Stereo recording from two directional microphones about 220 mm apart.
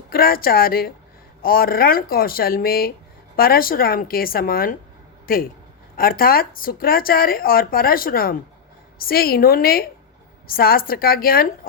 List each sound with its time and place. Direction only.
0.1 s a man's voice: 40° left (ahead or behind)